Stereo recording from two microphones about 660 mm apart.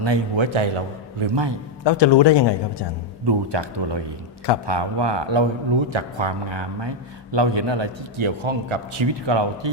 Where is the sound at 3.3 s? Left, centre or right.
Right.